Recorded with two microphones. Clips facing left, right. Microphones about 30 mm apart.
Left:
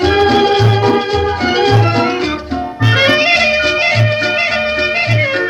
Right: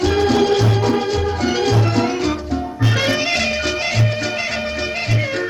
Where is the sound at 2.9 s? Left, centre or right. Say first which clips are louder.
Left 9 dB; left.